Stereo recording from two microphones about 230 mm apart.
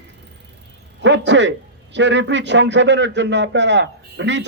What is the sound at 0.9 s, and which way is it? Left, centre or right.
A man's voice, right.